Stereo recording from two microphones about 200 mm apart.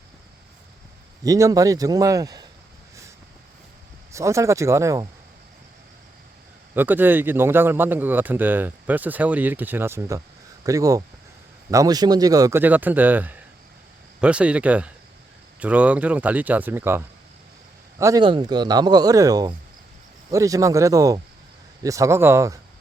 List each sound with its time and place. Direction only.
1.2 s a man's voice: 15° right (ahead or behind)
4.1 s a man's voice: 15° right (ahead or behind)
6.7 s a man's voice: 10° right (ahead or behind)
18.0 s a man's voice: 20° right (ahead or behind)